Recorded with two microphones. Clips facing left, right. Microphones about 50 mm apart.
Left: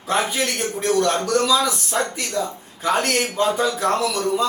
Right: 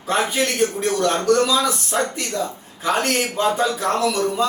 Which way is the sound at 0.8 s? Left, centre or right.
Centre.